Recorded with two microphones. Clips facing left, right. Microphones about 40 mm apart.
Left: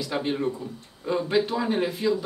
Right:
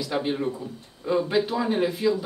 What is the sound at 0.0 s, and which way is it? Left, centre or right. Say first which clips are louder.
Speech: even; centre.